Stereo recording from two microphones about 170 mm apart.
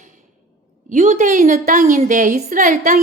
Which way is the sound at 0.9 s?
45° right (ahead or behind).